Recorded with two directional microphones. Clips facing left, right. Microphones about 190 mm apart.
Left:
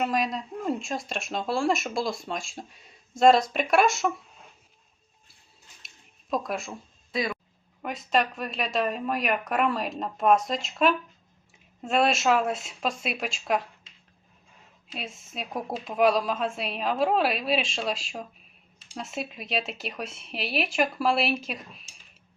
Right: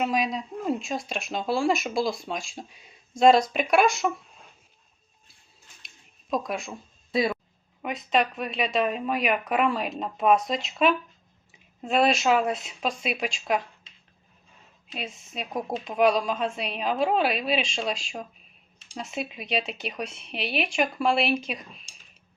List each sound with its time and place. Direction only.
0.0 s speech: centre (ahead or behind)
6.3 s speech: centre (ahead or behind)
7.1 s speech: 30° right (ahead or behind)
7.8 s speech: centre (ahead or behind)
14.9 s speech: centre (ahead or behind)